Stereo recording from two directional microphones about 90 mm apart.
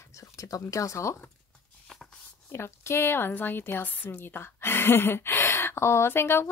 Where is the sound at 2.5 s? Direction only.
30° left (ahead or behind).